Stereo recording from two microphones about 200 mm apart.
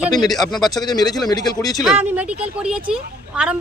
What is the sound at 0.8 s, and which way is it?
Speech, 20° left (ahead or behind).